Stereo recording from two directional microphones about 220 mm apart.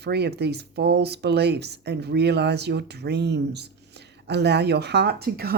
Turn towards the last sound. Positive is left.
turn(degrees=-45)  # may be behind; listen again after turning